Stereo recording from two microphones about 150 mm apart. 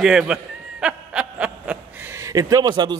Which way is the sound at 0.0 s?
5° right (ahead or behind).